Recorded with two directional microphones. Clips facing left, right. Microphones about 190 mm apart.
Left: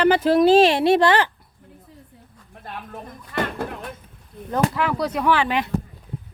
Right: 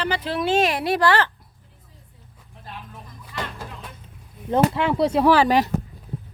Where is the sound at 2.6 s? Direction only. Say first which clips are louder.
Left 5 dB; 55° left (ahead or behind).